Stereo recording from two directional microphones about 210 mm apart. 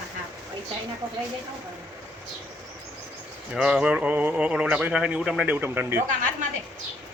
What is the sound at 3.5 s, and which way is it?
Speech, 5° right (ahead or behind).